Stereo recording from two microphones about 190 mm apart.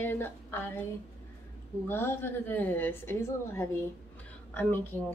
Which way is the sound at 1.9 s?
10° left (ahead or behind).